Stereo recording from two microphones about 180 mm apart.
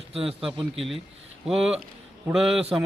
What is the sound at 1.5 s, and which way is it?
A man's voice, 5° right (ahead or behind).